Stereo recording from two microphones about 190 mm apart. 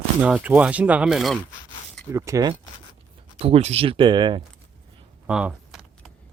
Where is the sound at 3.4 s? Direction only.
30° right (ahead or behind).